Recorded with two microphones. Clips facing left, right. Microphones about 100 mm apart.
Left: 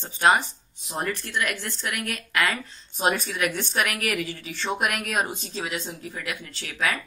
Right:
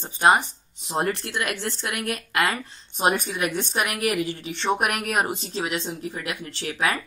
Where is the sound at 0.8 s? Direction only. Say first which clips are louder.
Right 4 dB; 30° right (ahead or behind).